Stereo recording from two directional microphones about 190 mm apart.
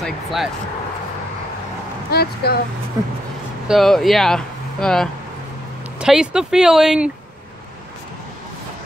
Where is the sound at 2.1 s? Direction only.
55° left (ahead or behind).